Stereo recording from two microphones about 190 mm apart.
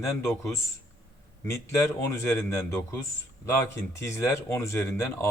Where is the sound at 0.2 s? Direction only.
15° left (ahead or behind).